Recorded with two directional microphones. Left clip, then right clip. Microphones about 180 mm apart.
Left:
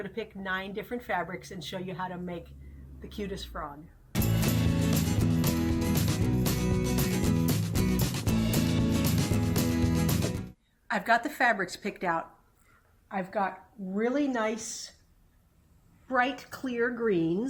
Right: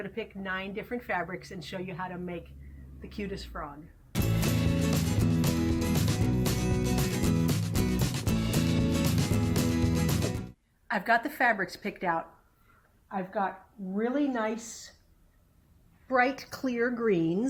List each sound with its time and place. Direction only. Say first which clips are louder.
0.0 s a woman's voice: even; centre (ahead or behind)
3.1 s music: left 1 dB; centre (ahead or behind)
13.1 s a woman's voice: left 1 dB; 15° left (ahead or behind)
13.9 s a woman's voice: left 1 dB; 5° left (ahead or behind)
16.0 s a woman's voice: right 2 dB; 35° right (ahead or behind); by 17.3 s 60° right (ahead or behind)